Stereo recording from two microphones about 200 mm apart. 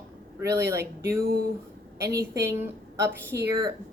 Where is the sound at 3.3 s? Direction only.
55° right (ahead or behind).